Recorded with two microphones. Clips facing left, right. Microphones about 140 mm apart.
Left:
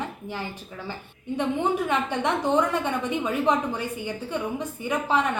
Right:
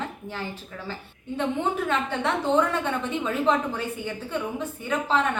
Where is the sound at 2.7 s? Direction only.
15° left (ahead or behind).